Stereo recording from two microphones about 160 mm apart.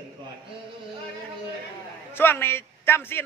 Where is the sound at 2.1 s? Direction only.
15° left (ahead or behind).